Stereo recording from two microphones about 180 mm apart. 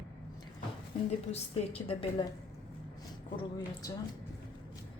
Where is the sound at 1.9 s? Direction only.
30° left (ahead or behind).